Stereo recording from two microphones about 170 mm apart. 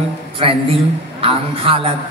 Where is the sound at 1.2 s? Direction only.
35° right (ahead or behind).